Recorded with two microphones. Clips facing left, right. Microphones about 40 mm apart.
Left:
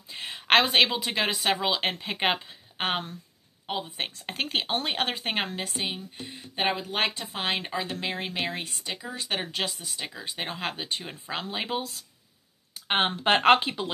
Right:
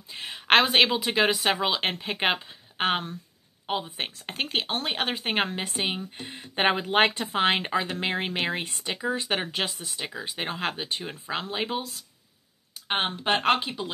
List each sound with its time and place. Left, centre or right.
0.1 s a sound: centre
0.9 s speech: centre
5.8 s speech: right
7.0 s speech: right; by 11.8 s centre
12.8 s speech: centre; by 13.8 s left